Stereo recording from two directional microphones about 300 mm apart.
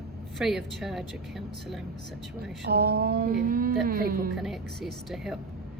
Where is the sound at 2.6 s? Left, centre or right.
Right.